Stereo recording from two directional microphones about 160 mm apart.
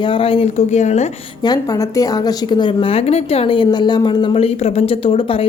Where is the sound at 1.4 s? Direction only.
25° left (ahead or behind).